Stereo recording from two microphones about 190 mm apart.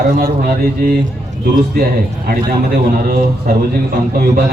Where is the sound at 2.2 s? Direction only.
55° right (ahead or behind).